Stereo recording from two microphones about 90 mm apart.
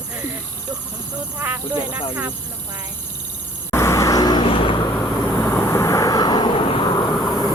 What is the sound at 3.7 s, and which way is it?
Vehicle, 30° left (ahead or behind).